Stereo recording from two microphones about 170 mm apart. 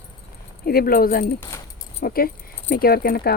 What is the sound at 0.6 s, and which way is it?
Speech, 60° left (ahead or behind).